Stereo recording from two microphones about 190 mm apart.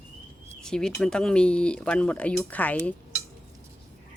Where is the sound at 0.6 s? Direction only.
5° left (ahead or behind).